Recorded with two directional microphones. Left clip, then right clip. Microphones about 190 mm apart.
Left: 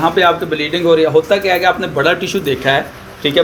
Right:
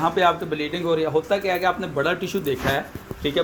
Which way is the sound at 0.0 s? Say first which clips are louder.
Left 7 dB; 55° right (ahead or behind).